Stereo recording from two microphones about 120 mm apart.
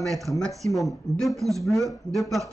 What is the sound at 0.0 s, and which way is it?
Speech, centre (ahead or behind).